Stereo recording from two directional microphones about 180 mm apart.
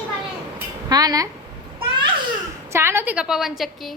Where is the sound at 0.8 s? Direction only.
20° right (ahead or behind).